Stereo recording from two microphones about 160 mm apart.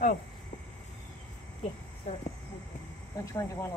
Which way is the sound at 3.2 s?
20° left (ahead or behind).